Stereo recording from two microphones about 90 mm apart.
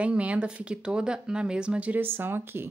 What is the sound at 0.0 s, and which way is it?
Speech, 15° right (ahead or behind).